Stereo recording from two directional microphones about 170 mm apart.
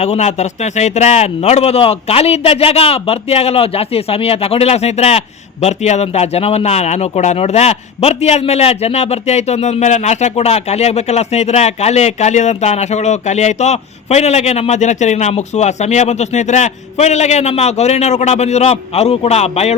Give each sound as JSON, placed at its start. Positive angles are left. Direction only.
{"t": 0.0, "sound": "speech", "side_deg": 40}